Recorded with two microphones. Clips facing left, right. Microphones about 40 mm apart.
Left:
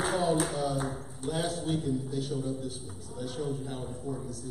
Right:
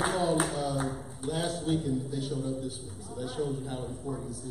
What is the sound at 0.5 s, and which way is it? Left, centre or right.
A man's voice, centre.